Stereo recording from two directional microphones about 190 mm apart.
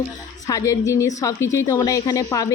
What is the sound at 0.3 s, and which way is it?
A woman's voice, 20° left (ahead or behind).